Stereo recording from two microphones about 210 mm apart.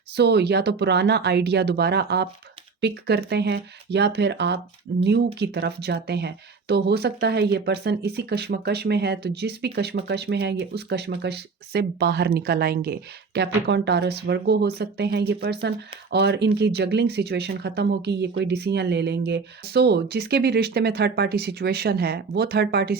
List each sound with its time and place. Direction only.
0.2 s speech: 50° right (ahead or behind)